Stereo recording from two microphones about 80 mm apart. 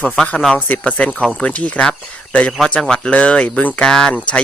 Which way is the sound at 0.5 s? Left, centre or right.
Centre.